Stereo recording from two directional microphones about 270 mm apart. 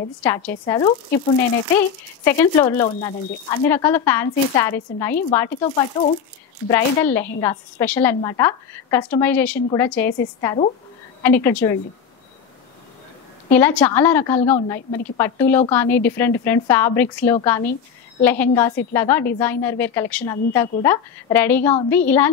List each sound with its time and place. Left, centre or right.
0.2 s speech: centre
2.2 s speech: centre
5.6 s speech: centre
13.5 s speech: centre